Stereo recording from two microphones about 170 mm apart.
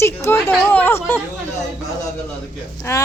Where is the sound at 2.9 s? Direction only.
15° left (ahead or behind).